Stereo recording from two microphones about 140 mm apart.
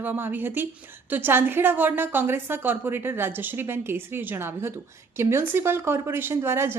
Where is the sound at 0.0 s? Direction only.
15° right (ahead or behind).